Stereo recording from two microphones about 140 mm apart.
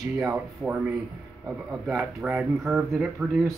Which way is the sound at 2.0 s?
10° right (ahead or behind).